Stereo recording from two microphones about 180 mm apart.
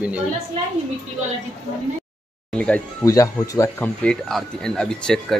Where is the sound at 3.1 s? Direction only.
20° left (ahead or behind).